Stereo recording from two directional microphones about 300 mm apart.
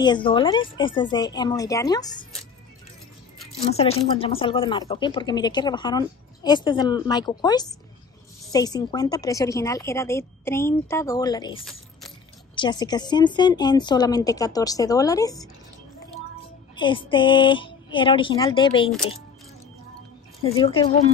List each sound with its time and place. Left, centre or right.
0.0 s speech: centre
3.9 s speech: centre
16.7 s speech: centre
20.4 s speech: centre